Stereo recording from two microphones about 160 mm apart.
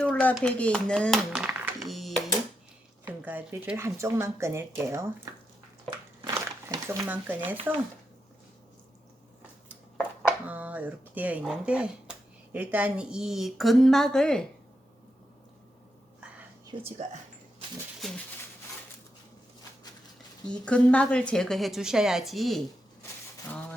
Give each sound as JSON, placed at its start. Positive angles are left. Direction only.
{"t": 0.0, "sound": "speech", "side_deg": 10}
{"t": 3.0, "sound": "speech", "side_deg": -10}
{"t": 6.3, "sound": "dog", "side_deg": -20}
{"t": 7.1, "sound": "speech", "side_deg": -10}
{"t": 10.4, "sound": "a woman's voice", "side_deg": -10}
{"t": 16.7, "sound": "speech", "side_deg": -30}
{"t": 18.0, "sound": "a woman's voice", "side_deg": 0}
{"t": 20.4, "sound": "a woman's voice", "side_deg": 5}